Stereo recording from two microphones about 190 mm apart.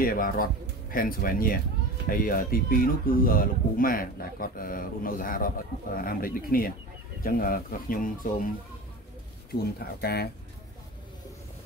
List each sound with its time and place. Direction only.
0.0 s speech: 50° left (ahead or behind)
9.5 s speech: 55° left (ahead or behind)